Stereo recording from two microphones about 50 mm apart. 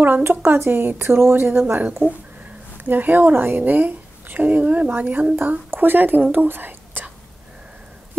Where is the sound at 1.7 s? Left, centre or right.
Right.